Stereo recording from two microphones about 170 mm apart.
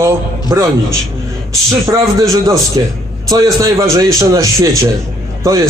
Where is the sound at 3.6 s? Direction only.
20° right (ahead or behind).